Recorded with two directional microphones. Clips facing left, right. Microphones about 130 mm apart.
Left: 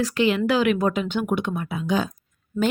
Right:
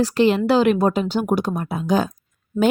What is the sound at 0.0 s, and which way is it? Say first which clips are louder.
A woman's voice: right 4 dB; 35° right (ahead or behind).